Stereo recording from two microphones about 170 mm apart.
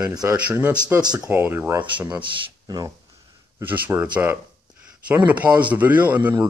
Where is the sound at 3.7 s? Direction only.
10° right (ahead or behind).